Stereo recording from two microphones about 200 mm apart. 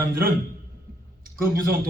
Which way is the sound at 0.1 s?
45° right (ahead or behind).